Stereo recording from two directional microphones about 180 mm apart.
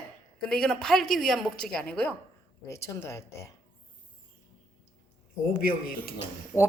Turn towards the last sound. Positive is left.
turn(degrees=20)  # may be behind; listen again after turning